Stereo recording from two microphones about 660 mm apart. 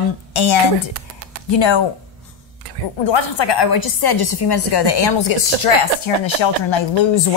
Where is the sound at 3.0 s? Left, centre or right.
Left.